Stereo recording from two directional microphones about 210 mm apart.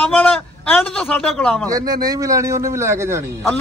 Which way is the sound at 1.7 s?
15° right (ahead or behind).